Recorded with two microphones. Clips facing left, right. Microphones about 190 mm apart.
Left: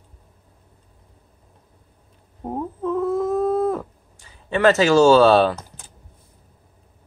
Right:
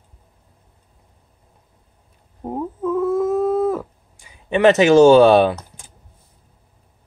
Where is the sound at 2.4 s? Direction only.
5° right (ahead or behind).